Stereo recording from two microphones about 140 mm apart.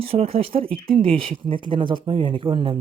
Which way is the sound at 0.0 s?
45° right (ahead or behind).